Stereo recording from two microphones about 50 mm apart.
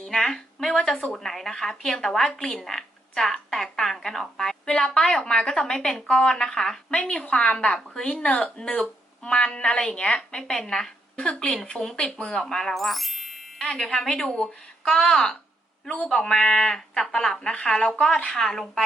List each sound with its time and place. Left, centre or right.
0.2 s speech: centre